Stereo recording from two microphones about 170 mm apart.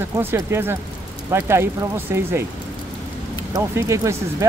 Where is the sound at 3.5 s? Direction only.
15° right (ahead or behind).